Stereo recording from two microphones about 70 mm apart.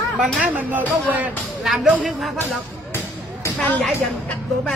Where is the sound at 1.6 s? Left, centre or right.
Centre.